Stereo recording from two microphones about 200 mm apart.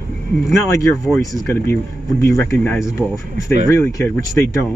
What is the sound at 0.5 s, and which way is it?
Speech, 15° left (ahead or behind).